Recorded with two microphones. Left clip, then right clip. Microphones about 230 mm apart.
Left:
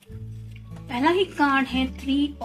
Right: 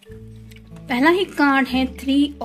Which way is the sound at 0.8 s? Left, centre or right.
Right.